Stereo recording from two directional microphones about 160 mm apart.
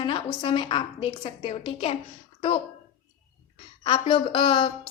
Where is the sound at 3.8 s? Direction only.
30° left (ahead or behind).